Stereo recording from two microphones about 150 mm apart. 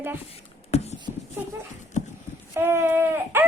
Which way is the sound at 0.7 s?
45° left (ahead or behind).